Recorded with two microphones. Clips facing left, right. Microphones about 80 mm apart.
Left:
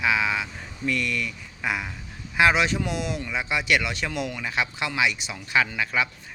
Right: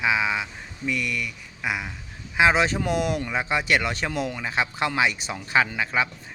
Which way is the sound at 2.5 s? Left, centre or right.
Right.